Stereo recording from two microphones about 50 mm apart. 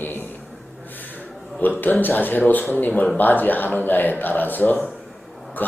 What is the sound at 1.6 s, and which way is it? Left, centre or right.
Speech, left.